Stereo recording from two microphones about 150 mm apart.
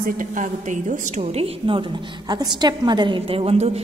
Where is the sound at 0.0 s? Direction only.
55° right (ahead or behind).